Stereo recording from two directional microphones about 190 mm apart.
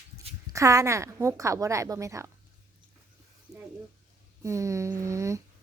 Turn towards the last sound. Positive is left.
turn(degrees=-15)  # may be behind; listen again after turning